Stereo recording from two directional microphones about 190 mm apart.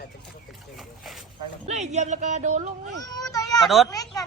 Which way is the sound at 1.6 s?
35° right (ahead or behind).